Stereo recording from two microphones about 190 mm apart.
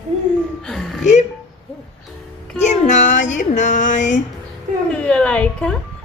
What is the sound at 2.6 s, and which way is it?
Female singing, 40° left (ahead or behind).